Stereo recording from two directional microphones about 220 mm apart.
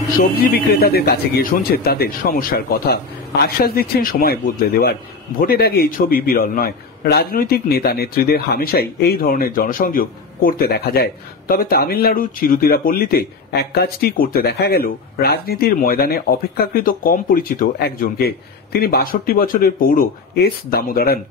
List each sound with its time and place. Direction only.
0.2 s a man's voice: 45° left (ahead or behind)